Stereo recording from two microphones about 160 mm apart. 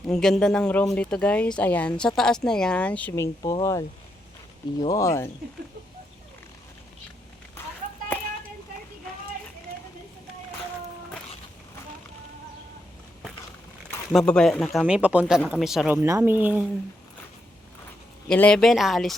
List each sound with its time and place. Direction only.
0.1 s speech: 5° left (ahead or behind); by 5.3 s 20° left (ahead or behind)
14.1 s speech: 5° left (ahead or behind)
15.9 s speech: 20° right (ahead or behind)
18.3 s speech: 5° left (ahead or behind)